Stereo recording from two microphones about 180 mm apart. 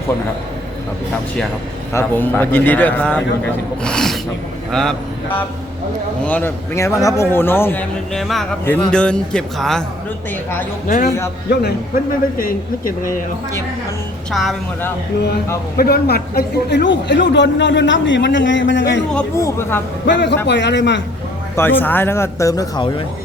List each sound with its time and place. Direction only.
1.9 s a man's voice: 10° left (ahead or behind)
6.2 s a man's voice: 10° left (ahead or behind)
10.8 s speech: 45° left (ahead or behind)
11.4 s speech: 65° left (ahead or behind)
12.4 s speech: 50° left (ahead or behind)
14.3 s a man's voice: centre (ahead or behind)
15.8 s a man's voice: 60° left (ahead or behind); by 19.0 s 80° left
19.4 s a man's voice: 15° left (ahead or behind)
20.1 s a man's voice: 75° left (ahead or behind)
21.5 s a man's voice: 10° left (ahead or behind)